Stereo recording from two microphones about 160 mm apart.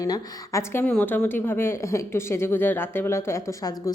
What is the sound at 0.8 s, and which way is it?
A woman's voice, 10° left (ahead or behind).